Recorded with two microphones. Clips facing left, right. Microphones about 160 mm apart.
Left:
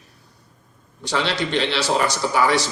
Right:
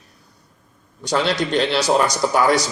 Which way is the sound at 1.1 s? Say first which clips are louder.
Right 3 dB; 45° right (ahead or behind).